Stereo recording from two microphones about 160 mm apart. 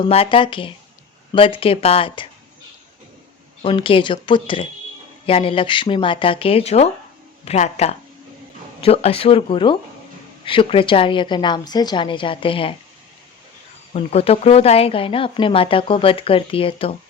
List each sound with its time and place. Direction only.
0.1 s speech: 35° left (ahead or behind)
3.6 s speech: 35° left (ahead or behind)
13.9 s speech: 40° left (ahead or behind)